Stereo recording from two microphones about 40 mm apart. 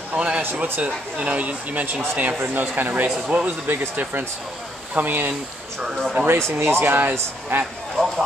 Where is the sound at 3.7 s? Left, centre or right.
Right.